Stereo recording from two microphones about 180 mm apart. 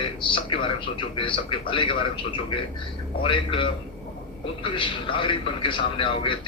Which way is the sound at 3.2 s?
30° left (ahead or behind).